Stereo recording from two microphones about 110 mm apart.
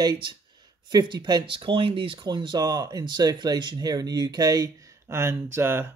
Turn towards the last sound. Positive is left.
turn(degrees=-20)  # may be behind; listen again after turning